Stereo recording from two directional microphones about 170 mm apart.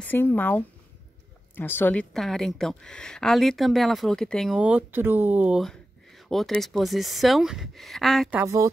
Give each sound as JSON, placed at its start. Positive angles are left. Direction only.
{"t": 0.0, "sound": "a woman's voice", "side_deg": 10}
{"t": 5.6, "sound": "a woman's voice", "side_deg": 0}
{"t": 8.3, "sound": "a woman's voice", "side_deg": -15}